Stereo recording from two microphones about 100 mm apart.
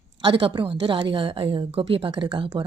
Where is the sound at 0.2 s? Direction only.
55° right (ahead or behind).